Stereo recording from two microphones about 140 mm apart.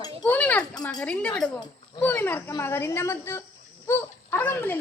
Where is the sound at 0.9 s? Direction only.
5° left (ahead or behind).